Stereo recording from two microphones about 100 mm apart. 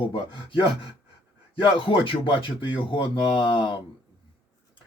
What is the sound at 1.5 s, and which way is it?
Speech, 55° left (ahead or behind).